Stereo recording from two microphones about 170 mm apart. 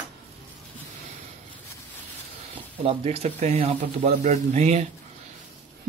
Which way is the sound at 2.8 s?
35° right (ahead or behind).